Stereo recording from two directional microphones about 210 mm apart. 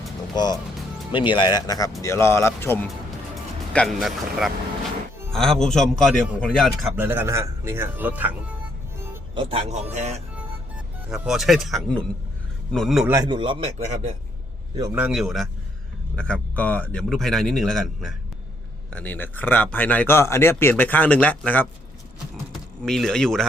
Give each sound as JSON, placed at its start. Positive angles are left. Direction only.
{"t": 1.1, "sound": "a man's voice", "side_deg": 25}
{"t": 6.9, "sound": "a man's voice", "side_deg": -10}
{"t": 9.3, "sound": "speech", "side_deg": -25}
{"t": 10.3, "sound": "music", "side_deg": -5}
{"t": 12.7, "sound": "a man's voice", "side_deg": 0}
{"t": 13.1, "sound": "speech", "side_deg": -15}
{"t": 14.8, "sound": "a man's voice", "side_deg": -15}
{"t": 15.0, "sound": "a man's voice", "side_deg": 0}
{"t": 22.8, "sound": "a man's voice", "side_deg": 0}